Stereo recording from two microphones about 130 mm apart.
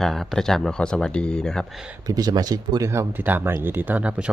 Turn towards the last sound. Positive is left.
turn(degrees=-10)  # may be behind; listen again after turning